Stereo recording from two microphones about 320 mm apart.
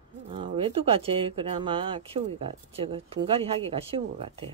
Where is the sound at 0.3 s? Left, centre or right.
Centre.